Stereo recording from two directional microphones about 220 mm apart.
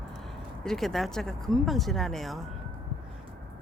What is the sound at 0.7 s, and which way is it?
Speech, centre (ahead or behind).